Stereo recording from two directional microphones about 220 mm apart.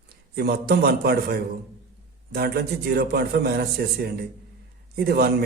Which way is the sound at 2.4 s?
45° right (ahead or behind).